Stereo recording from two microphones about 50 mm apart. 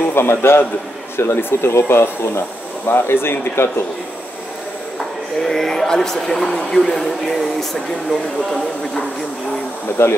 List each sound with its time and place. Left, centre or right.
0.1 s speech: left
5.4 s a man's voice: centre
10.0 s speech: left